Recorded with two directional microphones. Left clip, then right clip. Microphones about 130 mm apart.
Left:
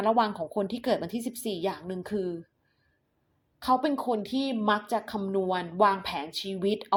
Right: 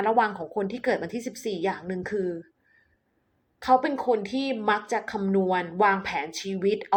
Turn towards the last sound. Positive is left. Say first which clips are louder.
# right 3 dB
turn(degrees=30)  # may be behind; listen again after turning